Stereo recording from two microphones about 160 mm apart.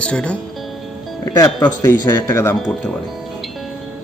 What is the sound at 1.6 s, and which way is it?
Speech, 25° left (ahead or behind).